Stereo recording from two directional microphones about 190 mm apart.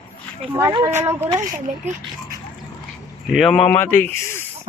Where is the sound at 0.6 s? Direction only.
20° right (ahead or behind).